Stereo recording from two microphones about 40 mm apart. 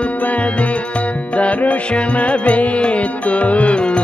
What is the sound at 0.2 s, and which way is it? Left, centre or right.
Music, left.